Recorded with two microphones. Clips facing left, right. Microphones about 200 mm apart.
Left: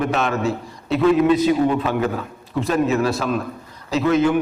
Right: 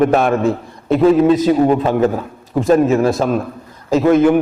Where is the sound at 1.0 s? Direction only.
35° right (ahead or behind).